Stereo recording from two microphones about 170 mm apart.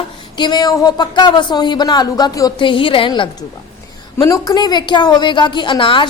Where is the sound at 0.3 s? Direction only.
25° left (ahead or behind).